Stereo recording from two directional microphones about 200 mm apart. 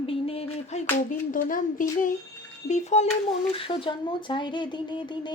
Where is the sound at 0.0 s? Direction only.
30° left (ahead or behind).